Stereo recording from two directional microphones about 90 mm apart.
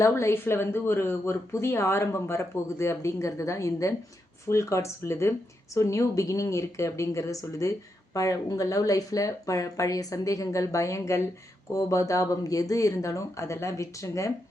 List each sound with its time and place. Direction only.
0.0 s a woman's voice: 30° left (ahead or behind)